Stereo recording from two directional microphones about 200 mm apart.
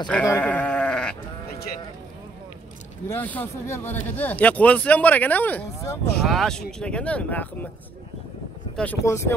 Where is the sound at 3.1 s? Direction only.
10° left (ahead or behind).